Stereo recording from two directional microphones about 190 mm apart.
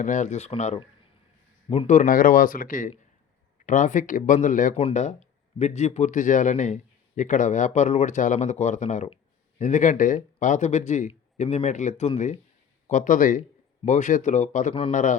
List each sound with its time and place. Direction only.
0.0 s speech: 40° left (ahead or behind)